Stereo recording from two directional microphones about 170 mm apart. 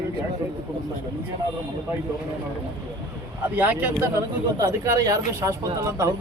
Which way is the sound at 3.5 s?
10° right (ahead or behind).